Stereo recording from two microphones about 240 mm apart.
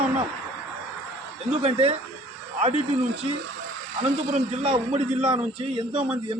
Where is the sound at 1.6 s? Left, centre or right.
Right.